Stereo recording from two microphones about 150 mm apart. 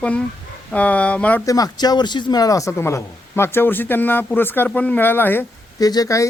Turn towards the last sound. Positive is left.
turn(degrees=20)  # may be behind; listen again after turning